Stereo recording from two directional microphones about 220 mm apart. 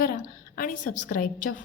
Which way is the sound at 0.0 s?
40° left (ahead or behind).